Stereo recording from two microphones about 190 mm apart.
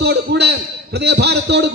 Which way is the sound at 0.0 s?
60° right (ahead or behind).